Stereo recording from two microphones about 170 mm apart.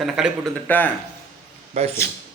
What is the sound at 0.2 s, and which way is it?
Speech, centre (ahead or behind).